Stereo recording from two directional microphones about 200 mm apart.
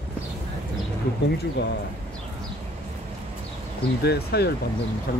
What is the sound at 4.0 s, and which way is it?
Speech, 55° left (ahead or behind).